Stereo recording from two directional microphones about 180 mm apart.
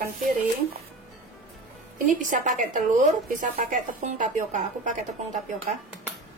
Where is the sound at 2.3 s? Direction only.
45° right (ahead or behind).